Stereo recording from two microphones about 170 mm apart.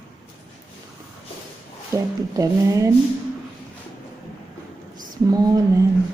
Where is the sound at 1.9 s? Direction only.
20° right (ahead or behind).